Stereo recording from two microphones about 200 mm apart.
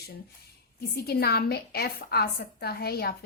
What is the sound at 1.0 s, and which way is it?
A woman's voice, 50° left (ahead or behind).